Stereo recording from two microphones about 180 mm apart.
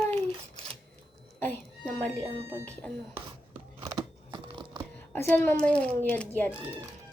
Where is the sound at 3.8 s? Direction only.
25° right (ahead or behind).